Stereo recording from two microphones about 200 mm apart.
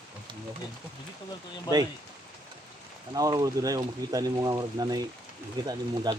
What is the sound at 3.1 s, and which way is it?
Speech, 20° right (ahead or behind).